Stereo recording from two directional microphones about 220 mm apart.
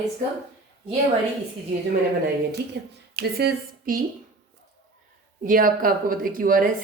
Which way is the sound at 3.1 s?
40° right (ahead or behind).